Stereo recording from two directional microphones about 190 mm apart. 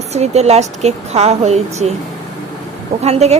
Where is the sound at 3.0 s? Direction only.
35° right (ahead or behind).